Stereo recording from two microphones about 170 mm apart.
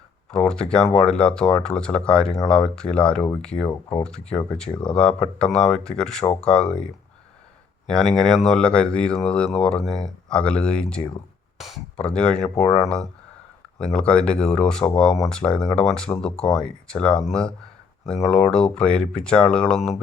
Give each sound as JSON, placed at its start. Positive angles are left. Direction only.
{"t": 0.3, "sound": "speech", "side_deg": 5}
{"t": 3.7, "sound": "speech", "side_deg": 25}
{"t": 4.3, "sound": "speech", "side_deg": 5}